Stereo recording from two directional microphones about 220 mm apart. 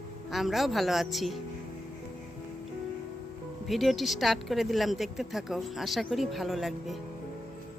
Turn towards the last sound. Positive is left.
turn(degrees=0)  # may be behind; listen again after turning